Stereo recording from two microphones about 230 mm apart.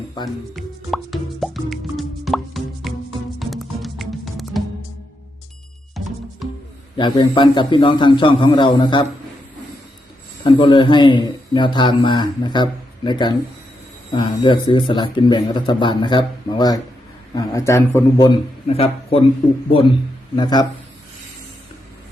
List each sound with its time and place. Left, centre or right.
0.5 s music: centre
6.4 s music: centre
6.9 s a man's voice: left
10.4 s a man's voice: centre
20.3 s a man's voice: centre